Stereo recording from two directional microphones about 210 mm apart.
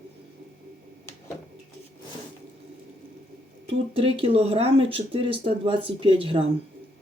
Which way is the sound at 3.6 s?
25° right (ahead or behind).